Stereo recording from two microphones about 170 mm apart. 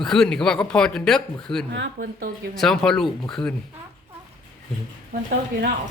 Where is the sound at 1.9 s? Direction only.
55° right (ahead or behind).